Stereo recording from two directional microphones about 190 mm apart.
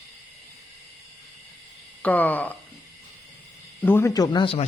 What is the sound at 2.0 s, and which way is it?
Speech, 10° left (ahead or behind).